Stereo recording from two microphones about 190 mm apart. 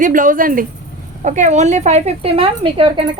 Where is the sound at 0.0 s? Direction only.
45° right (ahead or behind).